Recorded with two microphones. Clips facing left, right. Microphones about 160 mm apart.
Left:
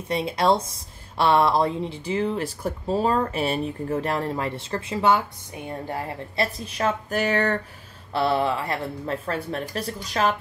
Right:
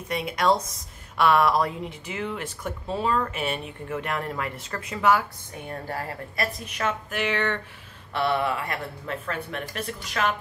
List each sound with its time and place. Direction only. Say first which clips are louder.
0.1 s a woman's voice: left 2 dB; 30° left (ahead or behind)